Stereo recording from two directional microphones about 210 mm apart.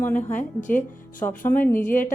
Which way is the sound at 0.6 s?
40° left (ahead or behind).